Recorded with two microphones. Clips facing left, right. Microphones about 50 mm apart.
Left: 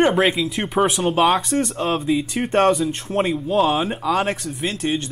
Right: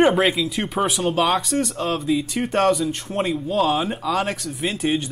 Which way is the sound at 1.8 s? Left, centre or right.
Left.